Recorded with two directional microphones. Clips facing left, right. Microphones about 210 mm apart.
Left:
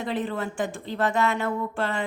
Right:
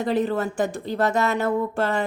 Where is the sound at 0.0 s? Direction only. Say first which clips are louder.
Right 6 dB; 40° right (ahead or behind).